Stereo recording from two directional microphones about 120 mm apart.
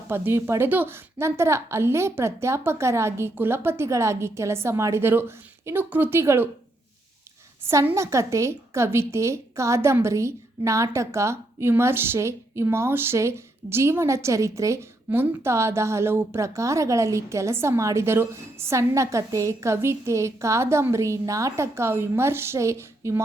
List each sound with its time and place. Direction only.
0.1 s a woman's voice: 20° right (ahead or behind)
7.6 s a woman's voice: 20° right (ahead or behind)